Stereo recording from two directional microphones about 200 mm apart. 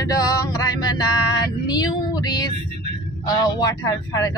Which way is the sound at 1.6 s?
20° left (ahead or behind).